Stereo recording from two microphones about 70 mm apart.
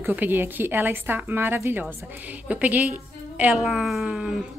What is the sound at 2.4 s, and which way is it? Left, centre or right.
Speech, centre.